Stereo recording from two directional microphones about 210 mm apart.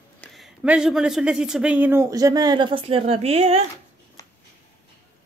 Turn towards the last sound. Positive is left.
turn(degrees=15)  # may be behind; listen again after turning